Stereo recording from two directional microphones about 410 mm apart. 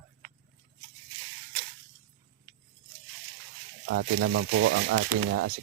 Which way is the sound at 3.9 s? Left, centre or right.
Right.